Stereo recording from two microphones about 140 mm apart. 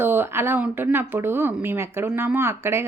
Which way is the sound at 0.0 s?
15° right (ahead or behind).